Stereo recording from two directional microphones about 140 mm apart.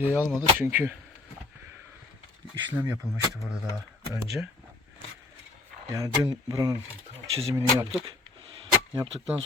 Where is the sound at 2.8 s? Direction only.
15° right (ahead or behind).